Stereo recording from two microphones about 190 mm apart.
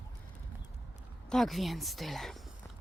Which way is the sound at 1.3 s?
Centre (ahead or behind).